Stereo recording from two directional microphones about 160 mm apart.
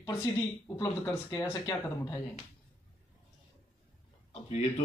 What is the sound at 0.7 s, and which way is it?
Speech, 15° left (ahead or behind).